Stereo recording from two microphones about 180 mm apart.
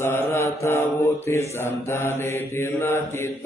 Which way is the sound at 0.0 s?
15° left (ahead or behind).